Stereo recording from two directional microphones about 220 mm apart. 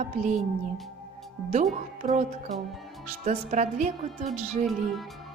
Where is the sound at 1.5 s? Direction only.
35° right (ahead or behind).